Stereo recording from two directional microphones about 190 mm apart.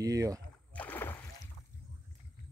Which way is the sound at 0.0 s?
20° right (ahead or behind).